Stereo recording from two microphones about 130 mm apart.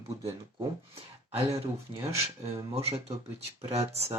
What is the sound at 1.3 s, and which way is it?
Speech, 50° right (ahead or behind).